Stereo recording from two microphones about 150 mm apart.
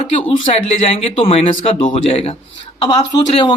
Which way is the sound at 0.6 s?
40° left (ahead or behind).